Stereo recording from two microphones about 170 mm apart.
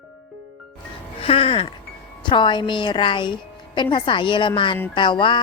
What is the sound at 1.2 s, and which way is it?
Speech, 35° left (ahead or behind).